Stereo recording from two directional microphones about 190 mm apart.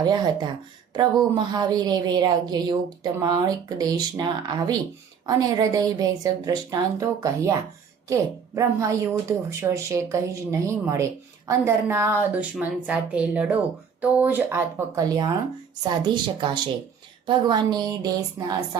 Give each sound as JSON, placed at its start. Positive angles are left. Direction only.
{"t": 0.0, "sound": "a woman's voice", "side_deg": -20}